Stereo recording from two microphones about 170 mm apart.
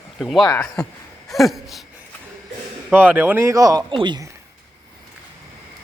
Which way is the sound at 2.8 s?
10° right (ahead or behind).